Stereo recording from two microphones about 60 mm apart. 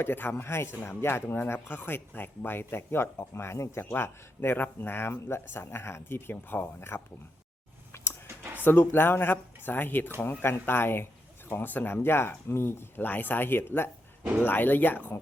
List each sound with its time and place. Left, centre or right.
0.0 s speech: left
3.8 s speech: left
7.9 s a sound: left
8.6 s speech: left